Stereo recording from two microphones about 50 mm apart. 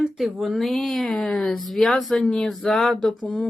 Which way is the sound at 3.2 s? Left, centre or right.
Left.